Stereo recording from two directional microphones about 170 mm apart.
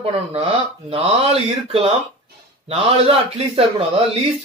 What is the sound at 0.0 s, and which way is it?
A man's voice, 35° right (ahead or behind).